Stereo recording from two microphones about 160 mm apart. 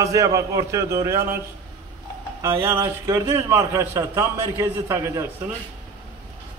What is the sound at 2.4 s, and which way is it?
A man's voice, 15° right (ahead or behind).